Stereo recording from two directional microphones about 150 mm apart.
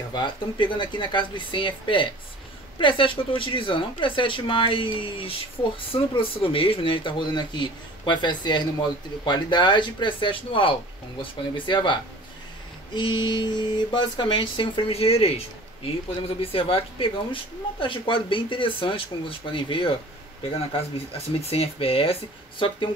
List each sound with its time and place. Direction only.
0.1 s speech: 30° left (ahead or behind)
21.1 s speech: 40° left (ahead or behind)